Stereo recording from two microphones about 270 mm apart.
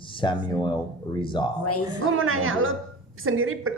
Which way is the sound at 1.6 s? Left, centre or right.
Left.